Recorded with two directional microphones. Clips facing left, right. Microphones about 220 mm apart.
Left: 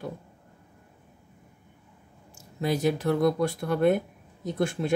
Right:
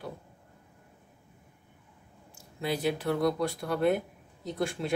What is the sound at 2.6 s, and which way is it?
Speech, 45° left (ahead or behind).